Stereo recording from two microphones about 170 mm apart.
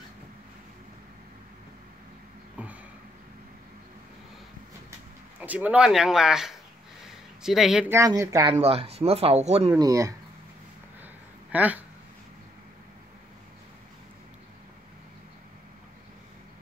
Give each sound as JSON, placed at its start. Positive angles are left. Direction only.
{"t": 5.4, "sound": "speech", "side_deg": -10}
{"t": 7.9, "sound": "a woman's voice", "side_deg": -20}
{"t": 8.5, "sound": "speech", "side_deg": -35}
{"t": 9.7, "sound": "speech", "side_deg": -20}
{"t": 11.5, "sound": "speech", "side_deg": -10}